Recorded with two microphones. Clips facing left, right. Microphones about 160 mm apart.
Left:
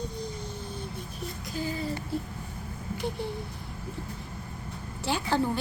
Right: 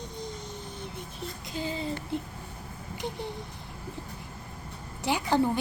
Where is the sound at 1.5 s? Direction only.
20° right (ahead or behind).